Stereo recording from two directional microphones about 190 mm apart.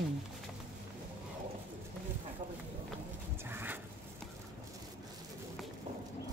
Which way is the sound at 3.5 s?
10° right (ahead or behind).